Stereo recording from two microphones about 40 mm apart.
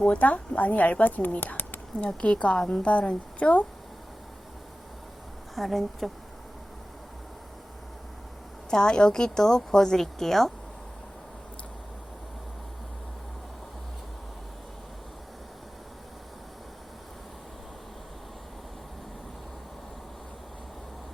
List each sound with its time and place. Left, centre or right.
0.3 s speech: left
2.0 s a woman's voice: left
5.5 s speech: centre
8.7 s a woman's voice: left